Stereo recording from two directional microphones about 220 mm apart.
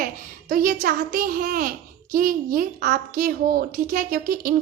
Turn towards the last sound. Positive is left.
turn(degrees=-40)  # may be behind; listen again after turning